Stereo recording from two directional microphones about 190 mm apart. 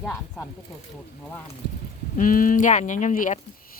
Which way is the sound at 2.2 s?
45° left (ahead or behind).